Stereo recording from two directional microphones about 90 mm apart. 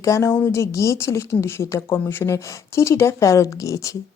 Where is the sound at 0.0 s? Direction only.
35° left (ahead or behind).